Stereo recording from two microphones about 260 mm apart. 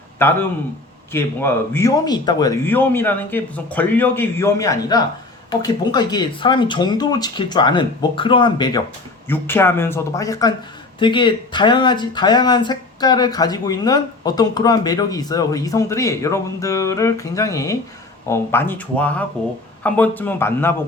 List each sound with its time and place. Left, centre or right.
0.2 s speech: centre